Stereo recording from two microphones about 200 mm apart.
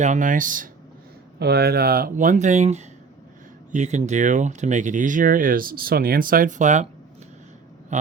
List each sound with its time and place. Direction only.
0.0 s speech: 40° right (ahead or behind)
1.4 s speech: 50° right (ahead or behind); by 6.8 s 35° right (ahead or behind)